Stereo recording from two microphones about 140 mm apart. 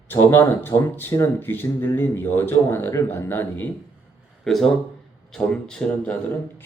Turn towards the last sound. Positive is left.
turn(degrees=15)  # may be behind; listen again after turning